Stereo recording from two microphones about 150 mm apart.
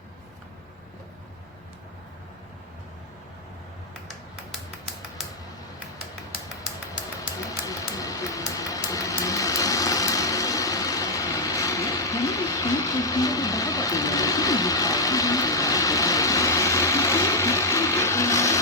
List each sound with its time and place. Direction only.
7.6 s vehicle: 25° left (ahead or behind)